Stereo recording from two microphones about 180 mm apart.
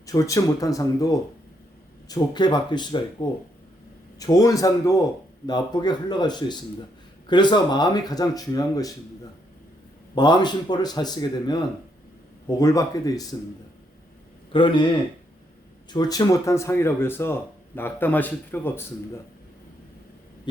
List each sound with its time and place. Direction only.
0.0 s speech: 20° left (ahead or behind)
10.2 s speech: 25° left (ahead or behind)
14.5 s speech: 25° left (ahead or behind)
15.9 s speech: 20° left (ahead or behind)